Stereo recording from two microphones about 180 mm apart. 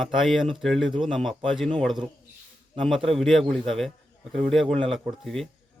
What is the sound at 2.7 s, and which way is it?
A man's voice, centre (ahead or behind).